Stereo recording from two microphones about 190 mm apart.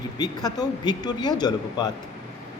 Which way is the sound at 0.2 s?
20° left (ahead or behind).